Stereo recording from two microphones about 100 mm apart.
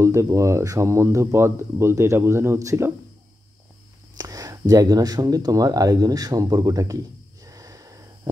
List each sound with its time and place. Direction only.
0.0 s speech: 30° right (ahead or behind)
4.2 s speech: 35° right (ahead or behind)
7.4 s gasp: 35° right (ahead or behind)